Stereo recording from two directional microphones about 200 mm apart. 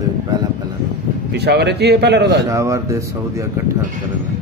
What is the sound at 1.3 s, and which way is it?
A man's voice, 55° right (ahead or behind).